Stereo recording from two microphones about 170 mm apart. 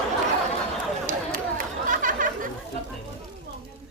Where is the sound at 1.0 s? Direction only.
50° right (ahead or behind).